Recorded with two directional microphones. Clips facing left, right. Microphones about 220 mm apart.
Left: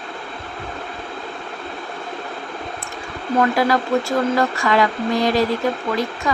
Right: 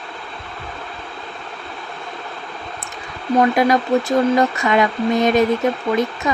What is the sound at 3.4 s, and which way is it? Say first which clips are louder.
Speech: right 2 dB; 20° right (ahead or behind).